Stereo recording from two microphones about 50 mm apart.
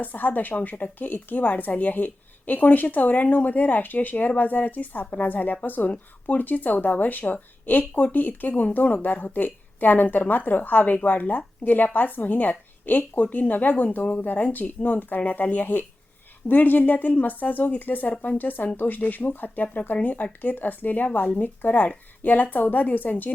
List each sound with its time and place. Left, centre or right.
0.0 s speech: left